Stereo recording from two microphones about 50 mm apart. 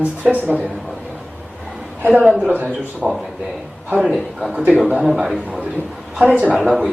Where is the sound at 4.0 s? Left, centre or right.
Centre.